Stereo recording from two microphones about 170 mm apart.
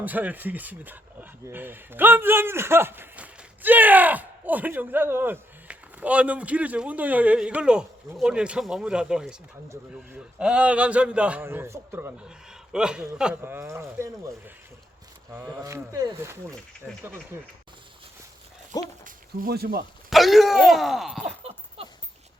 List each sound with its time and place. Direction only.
0.0 s speech: 10° right (ahead or behind)
19.0 s speech: 60° right (ahead or behind)
20.1 s speech: centre (ahead or behind)
21.2 s a sound: 35° right (ahead or behind)